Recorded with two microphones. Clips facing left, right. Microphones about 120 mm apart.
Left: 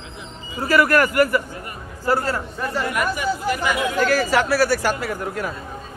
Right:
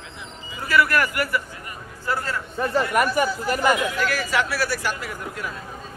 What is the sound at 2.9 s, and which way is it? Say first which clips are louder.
Speech: right 2 dB; 45° right (ahead or behind).